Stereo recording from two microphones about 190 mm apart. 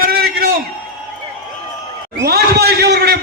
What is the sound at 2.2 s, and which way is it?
A man's voice, 60° right (ahead or behind).